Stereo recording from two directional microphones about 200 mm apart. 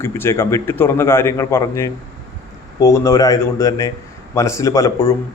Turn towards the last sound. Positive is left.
turn(degrees=15)  # may be behind; listen again after turning